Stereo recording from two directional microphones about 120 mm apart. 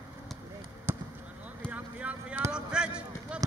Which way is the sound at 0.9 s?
20° right (ahead or behind).